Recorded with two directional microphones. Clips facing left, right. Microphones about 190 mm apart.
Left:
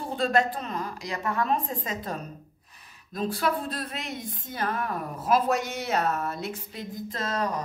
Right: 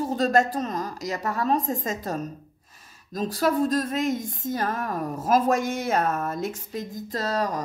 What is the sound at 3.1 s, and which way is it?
A woman's voice, 40° right (ahead or behind).